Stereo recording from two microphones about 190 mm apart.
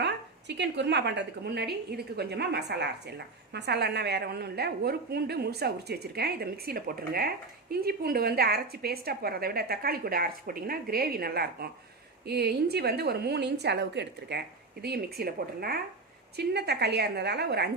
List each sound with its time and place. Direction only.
0.0 s a woman's voice: 65° right (ahead or behind)